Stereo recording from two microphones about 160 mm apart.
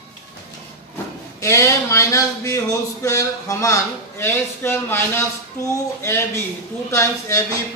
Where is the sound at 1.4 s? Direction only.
20° left (ahead or behind).